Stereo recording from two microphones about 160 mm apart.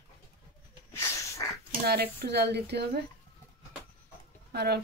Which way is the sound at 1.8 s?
85° right.